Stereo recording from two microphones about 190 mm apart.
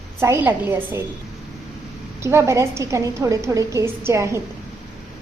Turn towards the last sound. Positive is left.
turn(degrees=-15)  # may be behind; listen again after turning